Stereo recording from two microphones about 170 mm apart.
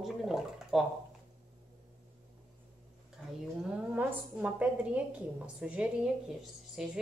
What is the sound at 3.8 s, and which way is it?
A woman's voice, 5° right (ahead or behind).